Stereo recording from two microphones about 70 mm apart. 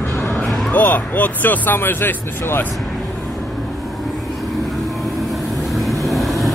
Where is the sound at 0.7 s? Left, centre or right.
Left.